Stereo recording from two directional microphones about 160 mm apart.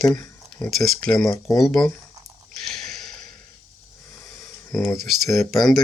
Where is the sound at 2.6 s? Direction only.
Centre (ahead or behind).